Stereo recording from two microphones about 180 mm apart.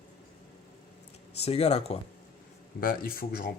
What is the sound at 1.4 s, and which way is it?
Speech, 35° left (ahead or behind).